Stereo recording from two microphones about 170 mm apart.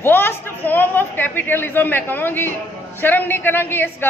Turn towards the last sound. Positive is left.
turn(degrees=15)  # may be behind; listen again after turning